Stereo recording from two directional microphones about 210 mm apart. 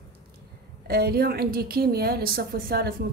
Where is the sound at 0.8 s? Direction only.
45° right (ahead or behind).